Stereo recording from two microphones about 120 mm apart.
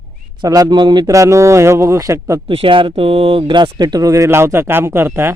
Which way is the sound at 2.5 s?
45° right (ahead or behind).